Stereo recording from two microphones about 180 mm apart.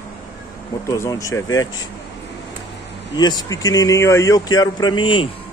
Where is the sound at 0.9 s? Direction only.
20° left (ahead or behind).